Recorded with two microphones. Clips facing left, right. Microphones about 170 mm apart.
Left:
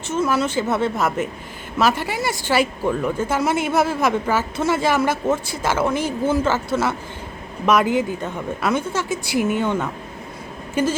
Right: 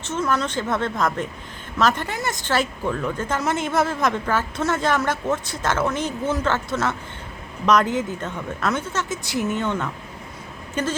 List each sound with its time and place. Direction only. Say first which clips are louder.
0.0 s speech: left 3 dB; 10° left (ahead or behind)